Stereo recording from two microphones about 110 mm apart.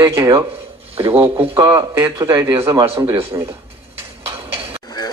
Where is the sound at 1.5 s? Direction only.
30° right (ahead or behind).